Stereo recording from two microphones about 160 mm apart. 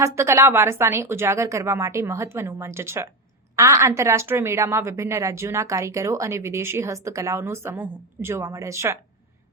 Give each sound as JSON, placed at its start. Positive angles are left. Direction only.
{"t": 0.0, "sound": "a woman's voice", "side_deg": -15}